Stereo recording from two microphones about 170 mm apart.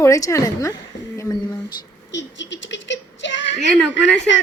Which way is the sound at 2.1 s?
90° left.